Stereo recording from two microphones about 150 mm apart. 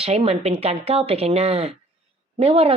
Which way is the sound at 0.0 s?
40° right (ahead or behind).